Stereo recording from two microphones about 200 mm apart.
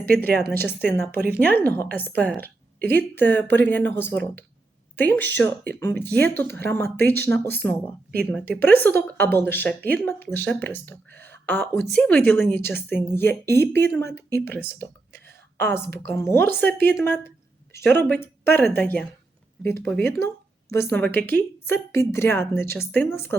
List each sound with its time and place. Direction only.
0.0 s a woman's voice: 50° right (ahead or behind)
0.5 s a woman's voice: 10° left (ahead or behind)